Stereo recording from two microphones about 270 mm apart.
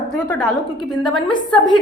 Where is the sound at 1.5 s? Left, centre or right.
Centre.